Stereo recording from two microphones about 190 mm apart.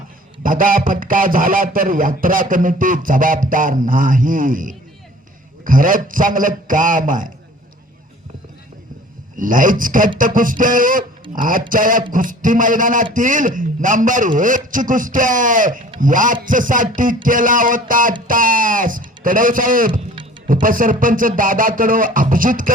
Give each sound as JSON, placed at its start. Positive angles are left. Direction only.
{"t": 0.4, "sound": "a man's voice", "side_deg": -45}
{"t": 9.4, "sound": "a man's voice", "side_deg": -45}